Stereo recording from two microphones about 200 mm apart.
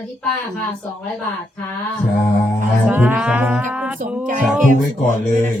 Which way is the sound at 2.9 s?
10° right (ahead or behind).